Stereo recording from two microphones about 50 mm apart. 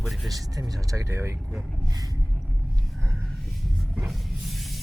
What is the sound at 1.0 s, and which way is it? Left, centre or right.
Speech, right.